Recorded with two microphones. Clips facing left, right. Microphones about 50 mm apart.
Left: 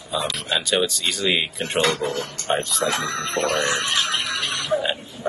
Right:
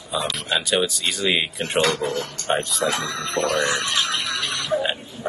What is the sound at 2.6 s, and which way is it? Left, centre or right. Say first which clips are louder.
Speech: even; centre.